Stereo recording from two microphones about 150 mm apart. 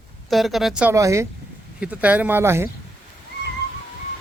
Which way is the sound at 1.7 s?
10° right (ahead or behind).